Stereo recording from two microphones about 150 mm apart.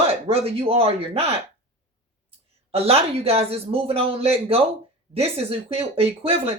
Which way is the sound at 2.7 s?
40° right (ahead or behind).